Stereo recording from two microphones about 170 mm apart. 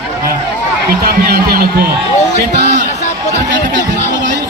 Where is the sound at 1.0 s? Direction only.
65° right (ahead or behind).